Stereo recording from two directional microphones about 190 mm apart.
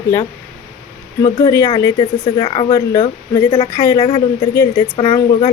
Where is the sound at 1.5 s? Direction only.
25° left (ahead or behind).